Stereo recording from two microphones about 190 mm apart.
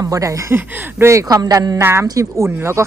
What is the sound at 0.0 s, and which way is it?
Speech, 15° right (ahead or behind).